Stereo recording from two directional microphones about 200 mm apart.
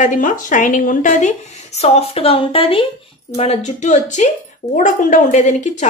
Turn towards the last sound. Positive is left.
turn(degrees=35)  # may be behind; listen again after turning